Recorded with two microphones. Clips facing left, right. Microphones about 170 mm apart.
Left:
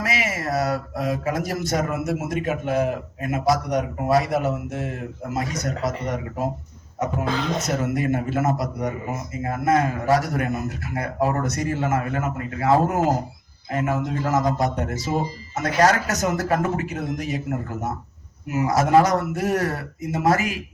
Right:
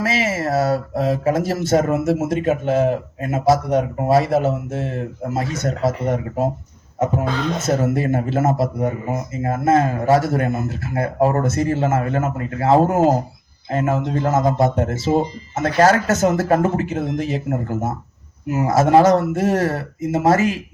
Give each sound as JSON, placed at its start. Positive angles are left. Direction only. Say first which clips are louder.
{"t": 0.0, "sound": "speech", "louder": "right 5 dB", "side_deg": -25}
{"t": 7.6, "sound": "speech", "louder": "right 5 dB", "side_deg": -25}